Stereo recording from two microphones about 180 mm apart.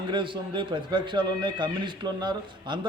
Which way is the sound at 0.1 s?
25° right (ahead or behind).